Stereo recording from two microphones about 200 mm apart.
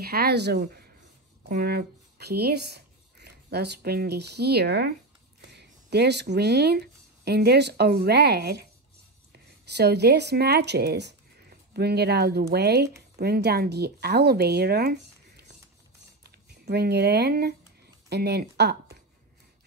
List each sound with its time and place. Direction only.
0.0 s speech: 50° right (ahead or behind)
16.6 s speech: 55° right (ahead or behind)